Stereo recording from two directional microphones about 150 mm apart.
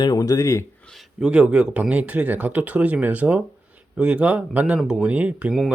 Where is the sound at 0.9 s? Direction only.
Centre (ahead or behind).